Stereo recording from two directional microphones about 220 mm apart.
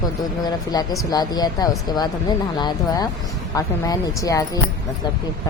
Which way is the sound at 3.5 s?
15° left (ahead or behind).